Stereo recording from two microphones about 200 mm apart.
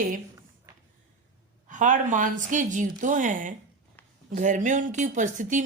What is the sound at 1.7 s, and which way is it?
Speech, 40° right (ahead or behind).